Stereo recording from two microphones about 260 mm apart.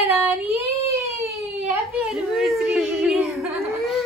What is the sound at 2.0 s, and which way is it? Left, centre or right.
Speech, centre.